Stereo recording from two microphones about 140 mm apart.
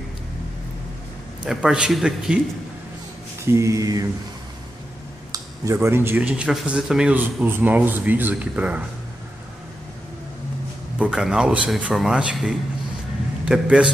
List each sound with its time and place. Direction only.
1.4 s a man's voice: 5° right (ahead or behind)
3.4 s mantra: 20° right (ahead or behind)
5.3 s speech: 20° right (ahead or behind)
11.0 s a man's voice: 5° right (ahead or behind)